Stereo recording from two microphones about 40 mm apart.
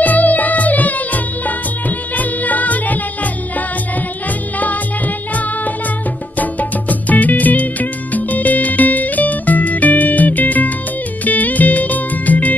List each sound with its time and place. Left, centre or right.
0.0 s music: left
4.6 s music: left